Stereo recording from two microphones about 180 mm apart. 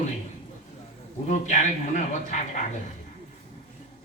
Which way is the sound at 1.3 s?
40° left (ahead or behind).